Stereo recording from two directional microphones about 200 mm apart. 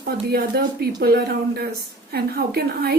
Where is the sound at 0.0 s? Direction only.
50° right (ahead or behind).